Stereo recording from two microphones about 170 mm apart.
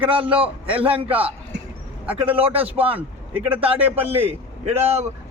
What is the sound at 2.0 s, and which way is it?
Speech, 10° right (ahead or behind).